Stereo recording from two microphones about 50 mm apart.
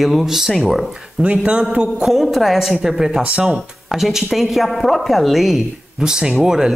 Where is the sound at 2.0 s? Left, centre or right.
Centre.